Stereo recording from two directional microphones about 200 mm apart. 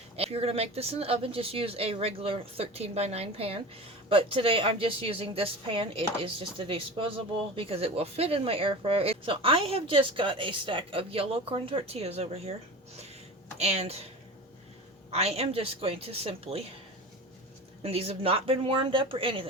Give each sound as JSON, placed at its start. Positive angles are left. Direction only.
{"t": 0.2, "sound": "speech", "side_deg": -30}
{"t": 13.6, "sound": "a woman's voice", "side_deg": -30}
{"t": 15.1, "sound": "a woman's voice", "side_deg": -30}
{"t": 17.8, "sound": "speech", "side_deg": -30}